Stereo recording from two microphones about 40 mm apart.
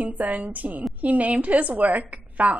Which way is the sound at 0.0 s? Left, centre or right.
Right.